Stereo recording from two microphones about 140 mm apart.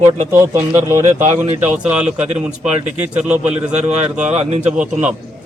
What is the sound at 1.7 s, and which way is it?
Speech, 10° right (ahead or behind).